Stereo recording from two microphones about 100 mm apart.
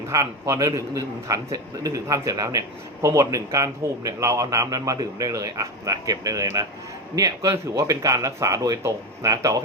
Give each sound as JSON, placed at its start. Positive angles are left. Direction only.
{"t": 0.1, "sound": "a man's voice", "side_deg": -30}